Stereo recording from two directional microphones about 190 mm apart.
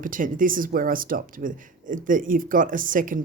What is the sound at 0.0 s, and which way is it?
Speech, 45° right (ahead or behind).